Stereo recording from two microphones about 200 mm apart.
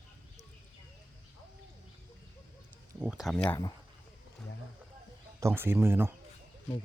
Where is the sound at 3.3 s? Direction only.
10° left (ahead or behind).